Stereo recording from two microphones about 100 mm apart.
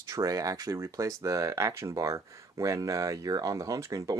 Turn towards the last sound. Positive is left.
turn(degrees=-35)  # may be behind; listen again after turning